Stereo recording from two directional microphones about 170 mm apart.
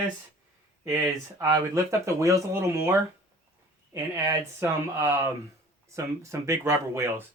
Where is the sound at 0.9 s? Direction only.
20° right (ahead or behind).